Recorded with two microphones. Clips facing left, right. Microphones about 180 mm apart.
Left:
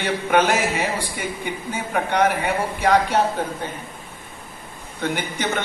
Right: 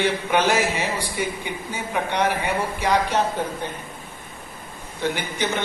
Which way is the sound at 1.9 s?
55° left (ahead or behind).